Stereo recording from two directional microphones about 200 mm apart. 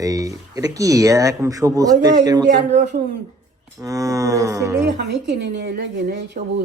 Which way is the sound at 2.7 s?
35° right (ahead or behind).